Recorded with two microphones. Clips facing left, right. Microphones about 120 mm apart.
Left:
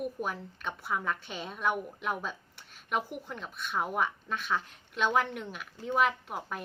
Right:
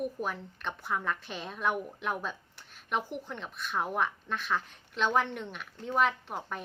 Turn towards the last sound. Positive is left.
turn(degrees=0)  # may be behind; listen again after turning